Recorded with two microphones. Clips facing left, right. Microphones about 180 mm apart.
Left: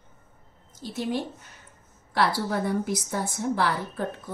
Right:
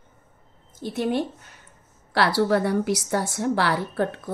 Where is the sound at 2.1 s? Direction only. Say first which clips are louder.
Right 5 dB; 75° right (ahead or behind).